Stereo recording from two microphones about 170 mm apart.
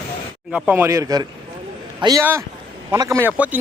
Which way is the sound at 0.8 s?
20° right (ahead or behind).